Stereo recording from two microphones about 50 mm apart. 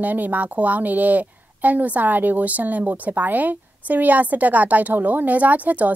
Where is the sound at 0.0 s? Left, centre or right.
Right.